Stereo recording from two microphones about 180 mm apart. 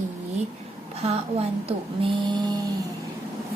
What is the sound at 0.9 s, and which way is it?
Speech, 35° right (ahead or behind).